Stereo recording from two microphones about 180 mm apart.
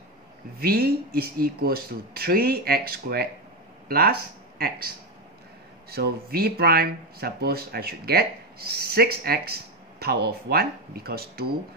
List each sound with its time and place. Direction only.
0.6 s speech: 60° right (ahead or behind)